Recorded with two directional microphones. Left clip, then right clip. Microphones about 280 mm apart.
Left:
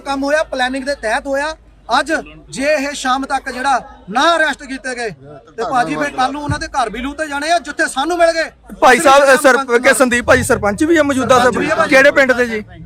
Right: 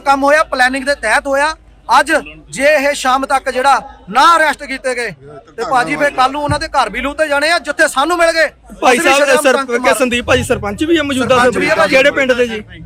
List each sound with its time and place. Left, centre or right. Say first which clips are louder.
0.0 s speech: right 6 dB; centre
5.7 s speech: right 4 dB; centre
9.0 s speech: left 2 dB; centre